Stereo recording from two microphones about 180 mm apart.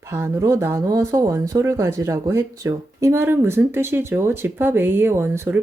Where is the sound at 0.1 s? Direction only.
15° right (ahead or behind).